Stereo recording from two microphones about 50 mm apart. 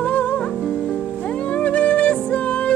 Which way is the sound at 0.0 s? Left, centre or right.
Left.